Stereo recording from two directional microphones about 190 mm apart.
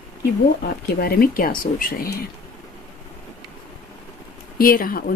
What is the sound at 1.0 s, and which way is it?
Speech, 50° left (ahead or behind).